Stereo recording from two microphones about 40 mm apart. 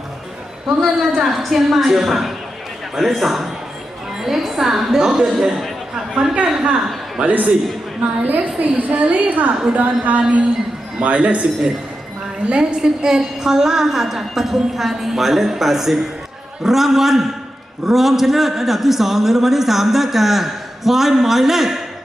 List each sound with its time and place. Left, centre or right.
0.8 s a woman's voice: centre
6.2 s a woman's voice: right
7.2 s a woman's voice: right
12.5 s a man's voice: right; by 21.8 s centre